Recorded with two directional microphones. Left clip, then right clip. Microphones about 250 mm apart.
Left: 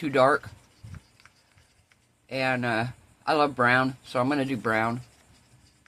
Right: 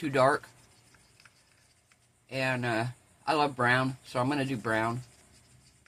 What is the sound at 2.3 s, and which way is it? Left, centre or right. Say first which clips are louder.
Speech: left 4 dB; centre.